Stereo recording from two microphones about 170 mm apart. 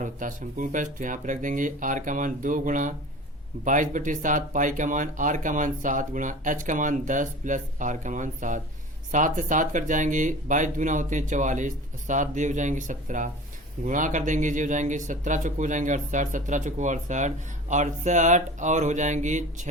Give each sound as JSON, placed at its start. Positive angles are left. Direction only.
{"t": 0.0, "sound": "speech", "side_deg": -50}